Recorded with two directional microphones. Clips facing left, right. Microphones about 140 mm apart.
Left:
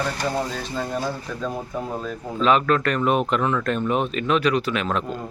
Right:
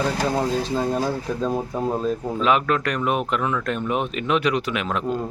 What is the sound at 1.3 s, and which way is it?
Speech, 35° right (ahead or behind).